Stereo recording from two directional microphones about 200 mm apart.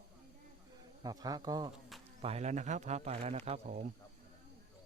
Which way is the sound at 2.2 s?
35° right (ahead or behind).